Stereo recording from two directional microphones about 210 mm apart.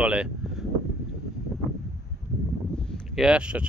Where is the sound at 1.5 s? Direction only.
Centre (ahead or behind).